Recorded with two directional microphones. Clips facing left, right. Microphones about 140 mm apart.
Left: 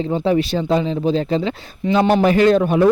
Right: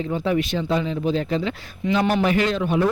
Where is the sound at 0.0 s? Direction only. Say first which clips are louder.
Left 5 dB; 30° left (ahead or behind); by 2.8 s 50° left (ahead or behind).